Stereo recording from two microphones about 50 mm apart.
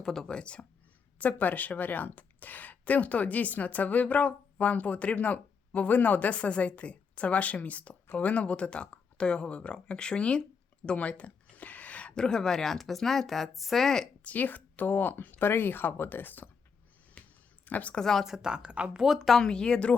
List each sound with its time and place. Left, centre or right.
0.0 s speech: centre
0.3 s speech: left
1.2 s a woman's voice: left; by 14.1 s centre
14.3 s a woman's voice: left
17.2 s a sound: left
17.7 s a woman's voice: left
17.9 s speech: centre
18.4 s speech: centre
19.0 s speech: centre
19.4 s speech: centre